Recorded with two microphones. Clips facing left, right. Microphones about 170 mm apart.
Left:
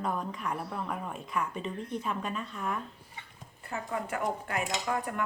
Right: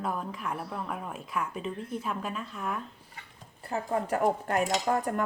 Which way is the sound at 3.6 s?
35° right (ahead or behind).